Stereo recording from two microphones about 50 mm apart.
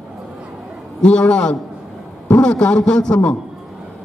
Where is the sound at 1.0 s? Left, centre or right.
Centre.